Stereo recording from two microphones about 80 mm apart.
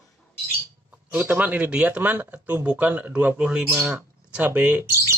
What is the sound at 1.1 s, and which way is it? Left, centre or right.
A man's voice, centre.